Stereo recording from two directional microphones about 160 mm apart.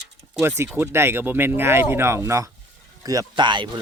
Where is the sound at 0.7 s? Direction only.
15° right (ahead or behind).